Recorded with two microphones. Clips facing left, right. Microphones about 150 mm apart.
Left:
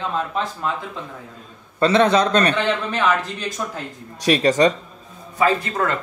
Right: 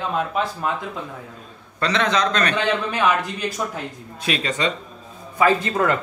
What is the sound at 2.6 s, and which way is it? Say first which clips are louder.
A man's voice: even; 10° right (ahead or behind).